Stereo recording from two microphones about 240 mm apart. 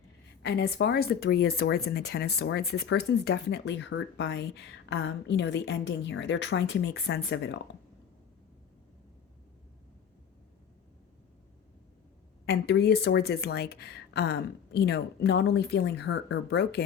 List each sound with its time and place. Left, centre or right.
0.4 s speech: left
12.5 s speech: left